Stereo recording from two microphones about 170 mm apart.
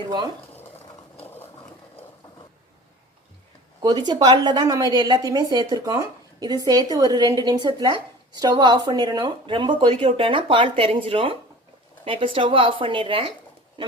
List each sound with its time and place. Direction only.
3.8 s a woman's voice: 25° right (ahead or behind)